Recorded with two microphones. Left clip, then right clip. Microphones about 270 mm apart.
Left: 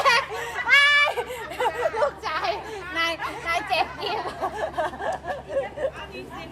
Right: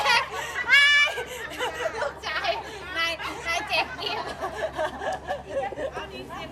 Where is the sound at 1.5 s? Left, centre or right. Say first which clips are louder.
Left 6 dB; centre.